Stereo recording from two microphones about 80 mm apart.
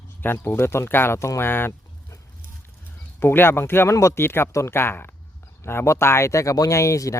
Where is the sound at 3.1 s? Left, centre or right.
Left.